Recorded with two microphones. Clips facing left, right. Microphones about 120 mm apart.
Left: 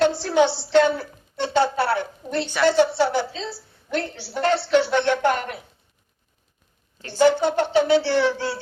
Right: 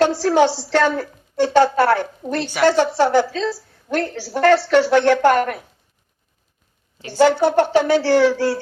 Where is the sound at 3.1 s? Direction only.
90° right.